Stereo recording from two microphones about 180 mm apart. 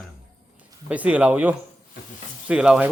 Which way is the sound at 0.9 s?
5° right (ahead or behind).